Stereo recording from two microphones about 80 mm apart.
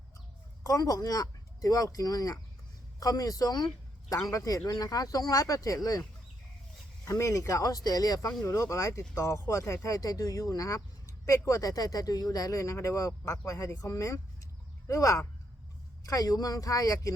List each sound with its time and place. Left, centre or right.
0.6 s speech: left
7.1 s speech: left
8.4 s speech: left